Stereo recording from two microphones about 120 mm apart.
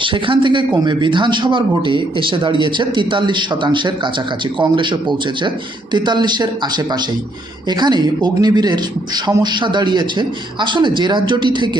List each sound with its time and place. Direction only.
0.0 s a man's voice: 45° right (ahead or behind)